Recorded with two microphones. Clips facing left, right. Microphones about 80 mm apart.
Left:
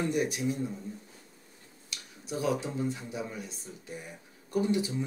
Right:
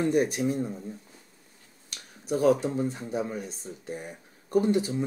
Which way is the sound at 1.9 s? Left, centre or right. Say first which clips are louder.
Right 8 dB; right.